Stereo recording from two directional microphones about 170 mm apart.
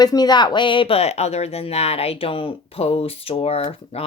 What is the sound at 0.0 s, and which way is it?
Speech, 25° left (ahead or behind).